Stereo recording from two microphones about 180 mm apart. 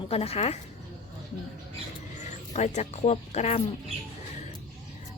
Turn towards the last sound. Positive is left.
turn(degrees=35)  # may be behind; listen again after turning